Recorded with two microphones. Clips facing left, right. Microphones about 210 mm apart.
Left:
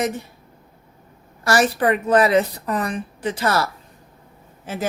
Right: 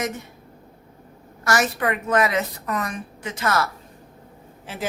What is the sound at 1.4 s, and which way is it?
A woman's voice, 30° left (ahead or behind).